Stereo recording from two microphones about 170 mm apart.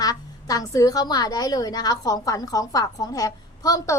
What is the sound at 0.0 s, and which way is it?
Speech, 20° left (ahead or behind).